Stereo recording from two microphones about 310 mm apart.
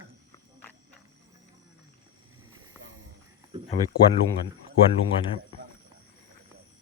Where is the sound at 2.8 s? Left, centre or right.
Right.